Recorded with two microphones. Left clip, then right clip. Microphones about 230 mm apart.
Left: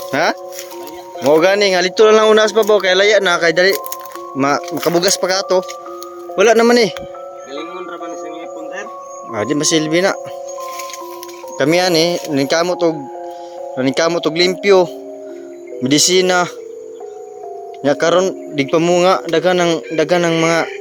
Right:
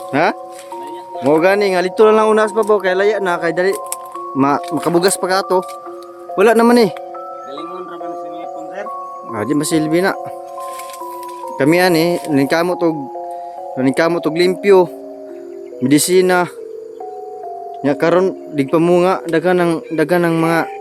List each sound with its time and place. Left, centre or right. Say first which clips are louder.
0.1 s speech: right 1 dB; centre
1.3 s speech: left 1 dB; centre
4.4 s speech: right 1 dB; centre
9.3 s speech: left 2 dB; centre
11.5 s speech: even; right
17.8 s speech: left 1 dB; centre